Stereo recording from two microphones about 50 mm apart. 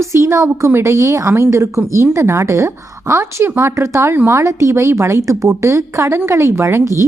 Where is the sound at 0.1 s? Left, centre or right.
Right.